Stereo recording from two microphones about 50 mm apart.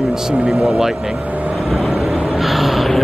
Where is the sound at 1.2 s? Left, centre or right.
Right.